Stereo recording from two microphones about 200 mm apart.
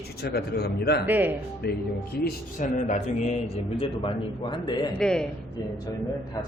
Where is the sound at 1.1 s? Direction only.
10° right (ahead or behind).